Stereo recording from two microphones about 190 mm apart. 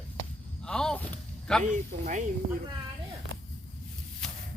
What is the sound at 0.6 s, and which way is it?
Speech, 5° left (ahead or behind).